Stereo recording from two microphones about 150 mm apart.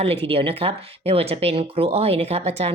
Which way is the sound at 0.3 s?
40° right (ahead or behind).